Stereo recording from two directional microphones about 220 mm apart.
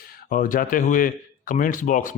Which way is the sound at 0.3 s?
40° left (ahead or behind).